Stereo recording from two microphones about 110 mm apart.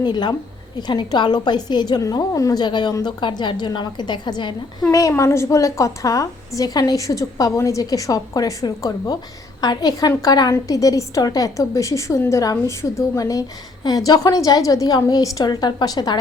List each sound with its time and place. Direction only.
0.0 s a woman's voice: 40° left (ahead or behind)
4.9 s a woman's voice: 30° left (ahead or behind)